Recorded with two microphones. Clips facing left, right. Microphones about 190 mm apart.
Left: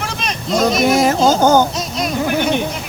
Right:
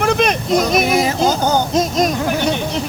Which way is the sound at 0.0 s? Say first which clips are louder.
Right 9 dB; 55° right (ahead or behind).